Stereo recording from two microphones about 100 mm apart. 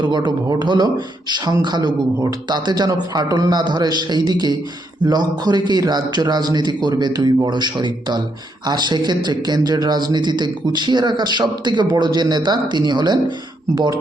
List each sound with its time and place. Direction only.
0.0 s a man's voice: 50° right (ahead or behind)